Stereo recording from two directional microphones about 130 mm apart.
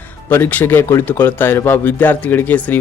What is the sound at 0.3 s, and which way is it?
Speech, 15° left (ahead or behind).